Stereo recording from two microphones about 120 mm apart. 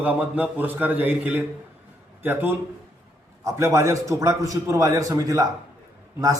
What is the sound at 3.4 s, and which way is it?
A man's voice, 25° right (ahead or behind).